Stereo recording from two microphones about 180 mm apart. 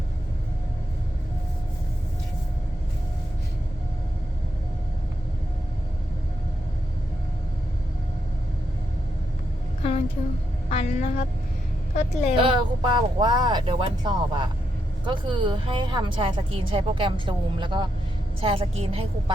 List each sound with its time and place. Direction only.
10.7 s a woman's voice: 35° left (ahead or behind)
12.4 s a woman's voice: 30° right (ahead or behind)